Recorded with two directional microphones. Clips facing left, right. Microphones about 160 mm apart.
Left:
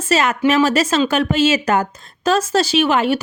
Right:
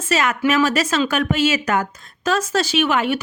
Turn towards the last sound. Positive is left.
turn(degrees=30)  # may be behind; listen again after turning